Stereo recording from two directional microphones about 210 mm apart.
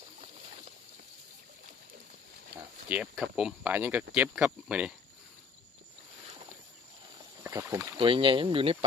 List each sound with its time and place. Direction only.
0.2 s vehicle: 30° right (ahead or behind)
2.9 s speech: 5° right (ahead or behind)
7.4 s rowboat: 15° right (ahead or behind)
7.9 s speech: 25° right (ahead or behind)